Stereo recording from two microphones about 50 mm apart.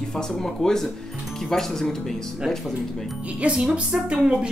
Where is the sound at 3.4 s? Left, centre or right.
Centre.